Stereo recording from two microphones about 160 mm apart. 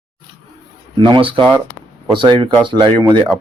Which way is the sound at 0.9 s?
30° right (ahead or behind).